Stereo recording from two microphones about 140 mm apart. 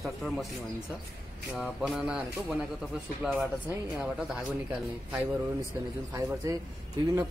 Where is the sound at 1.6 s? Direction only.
5° right (ahead or behind).